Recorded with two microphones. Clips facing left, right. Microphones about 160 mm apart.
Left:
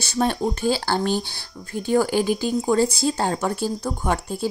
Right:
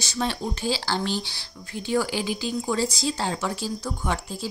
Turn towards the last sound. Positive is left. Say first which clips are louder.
# left 5 dB
turn(degrees=50)  # may be behind; listen again after turning